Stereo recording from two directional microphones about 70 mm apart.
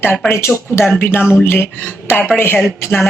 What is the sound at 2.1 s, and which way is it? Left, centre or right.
Speech, left.